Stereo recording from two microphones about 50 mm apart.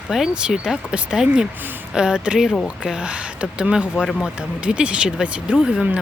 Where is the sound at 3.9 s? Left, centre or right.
Centre.